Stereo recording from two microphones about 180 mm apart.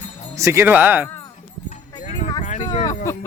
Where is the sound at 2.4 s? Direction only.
40° left (ahead or behind).